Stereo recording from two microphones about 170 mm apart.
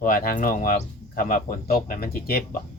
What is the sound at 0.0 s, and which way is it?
Speech, 60° left (ahead or behind).